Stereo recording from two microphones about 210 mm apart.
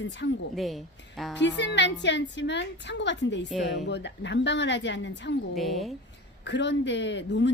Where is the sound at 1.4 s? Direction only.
55° left (ahead or behind).